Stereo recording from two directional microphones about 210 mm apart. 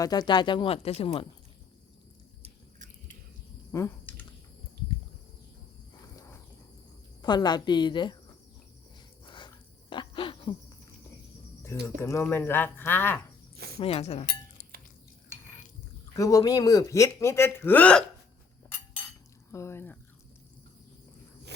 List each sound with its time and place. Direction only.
0.0 s speech: 20° left (ahead or behind)
2.4 s a sound: 35° right (ahead or behind)
3.7 s typing: 15° left (ahead or behind)
5.9 s a sound: 15° left (ahead or behind)
7.2 s speech: 20° left (ahead or behind)
9.2 s dog: 25° left (ahead or behind)
9.9 s a sound: 25° left (ahead or behind)
11.6 s speech: 15° left (ahead or behind)
13.7 s speech: 30° left (ahead or behind)
16.1 s speech: 15° left (ahead or behind)
19.5 s speech: 15° left (ahead or behind)